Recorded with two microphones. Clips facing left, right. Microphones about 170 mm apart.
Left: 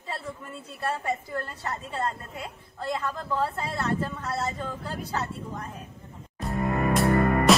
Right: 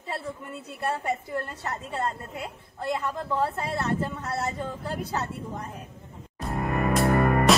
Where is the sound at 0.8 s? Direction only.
20° right (ahead or behind).